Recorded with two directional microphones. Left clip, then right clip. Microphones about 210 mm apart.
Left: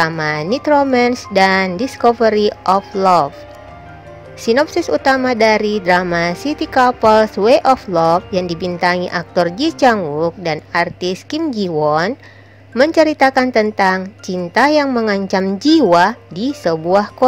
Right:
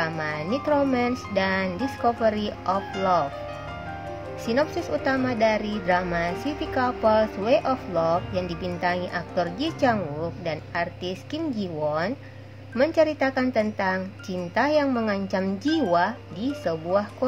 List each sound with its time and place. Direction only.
0.0 s a woman's voice: 45° left (ahead or behind)
4.5 s a woman's voice: 40° left (ahead or behind)